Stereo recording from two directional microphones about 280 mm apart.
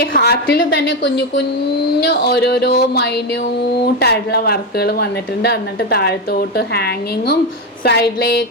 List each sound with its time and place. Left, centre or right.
0.0 s a woman's voice: left
2.2 s a woman's voice: left
4.0 s a woman's voice: left